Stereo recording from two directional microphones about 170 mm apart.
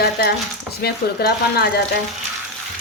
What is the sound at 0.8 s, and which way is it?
Speech, 70° left (ahead or behind).